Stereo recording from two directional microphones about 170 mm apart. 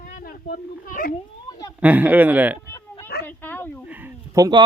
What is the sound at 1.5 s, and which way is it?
Cat, 25° left (ahead or behind).